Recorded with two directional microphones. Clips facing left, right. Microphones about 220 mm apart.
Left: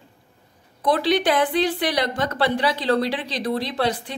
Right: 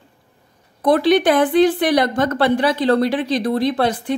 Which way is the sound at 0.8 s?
50° right (ahead or behind).